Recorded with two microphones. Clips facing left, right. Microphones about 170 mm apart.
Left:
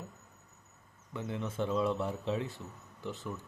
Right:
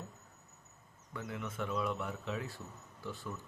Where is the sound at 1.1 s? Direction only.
30° left (ahead or behind).